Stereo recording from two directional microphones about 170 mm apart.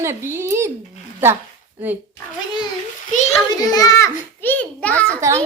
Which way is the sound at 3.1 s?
45° left (ahead or behind).